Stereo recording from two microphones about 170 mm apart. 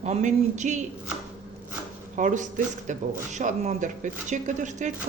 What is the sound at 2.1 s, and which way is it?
Speech, 50° right (ahead or behind).